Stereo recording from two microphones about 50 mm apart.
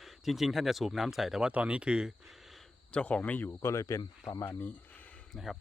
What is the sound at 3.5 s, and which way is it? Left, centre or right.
Speech, left.